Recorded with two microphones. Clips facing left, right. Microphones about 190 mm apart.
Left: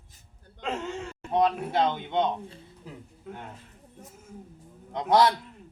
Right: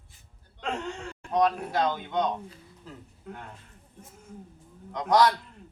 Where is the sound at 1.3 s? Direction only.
25° left (ahead or behind).